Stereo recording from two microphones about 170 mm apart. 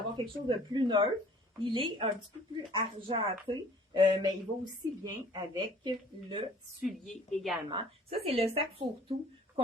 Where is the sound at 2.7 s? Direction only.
30° right (ahead or behind).